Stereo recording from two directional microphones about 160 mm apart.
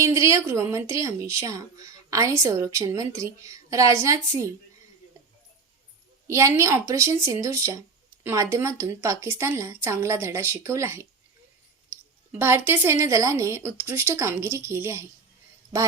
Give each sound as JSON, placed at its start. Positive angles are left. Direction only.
{"t": 0.0, "sound": "speech", "side_deg": -20}
{"t": 6.2, "sound": "speech", "side_deg": -20}
{"t": 11.9, "sound": "clicking", "side_deg": -15}
{"t": 12.3, "sound": "speech", "side_deg": -15}